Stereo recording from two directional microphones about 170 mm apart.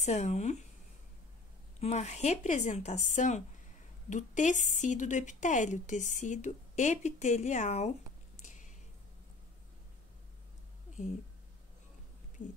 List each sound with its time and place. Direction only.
0.0 s speech: 40° left (ahead or behind)
1.8 s a woman's voice: 40° left (ahead or behind)
8.5 s a sound: 45° left (ahead or behind)